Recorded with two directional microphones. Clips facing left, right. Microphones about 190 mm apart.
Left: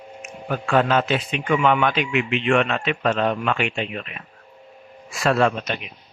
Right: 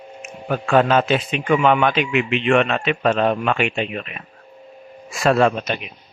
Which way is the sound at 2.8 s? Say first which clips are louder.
Right 3 dB; 15° right (ahead or behind).